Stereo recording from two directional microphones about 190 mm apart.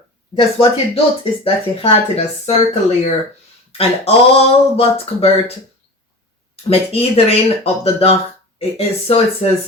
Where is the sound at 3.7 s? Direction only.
30° left (ahead or behind).